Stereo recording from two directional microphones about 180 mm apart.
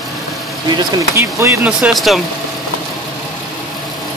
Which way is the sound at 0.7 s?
15° right (ahead or behind).